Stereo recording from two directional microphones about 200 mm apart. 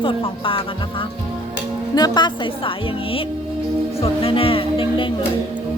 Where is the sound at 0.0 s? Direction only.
25° left (ahead or behind).